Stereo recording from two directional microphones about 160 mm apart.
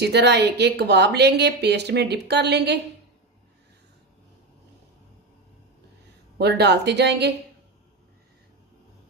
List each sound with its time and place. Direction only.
0.0 s speech: 90° right
6.3 s speech: 90° right